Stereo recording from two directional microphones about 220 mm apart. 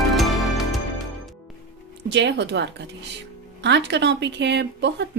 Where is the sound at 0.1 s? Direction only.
Centre (ahead or behind).